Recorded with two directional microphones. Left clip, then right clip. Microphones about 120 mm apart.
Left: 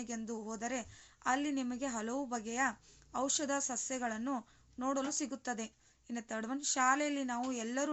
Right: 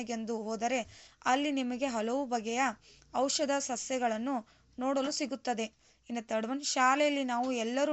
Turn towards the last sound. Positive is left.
turn(degrees=-25)  # may be behind; listen again after turning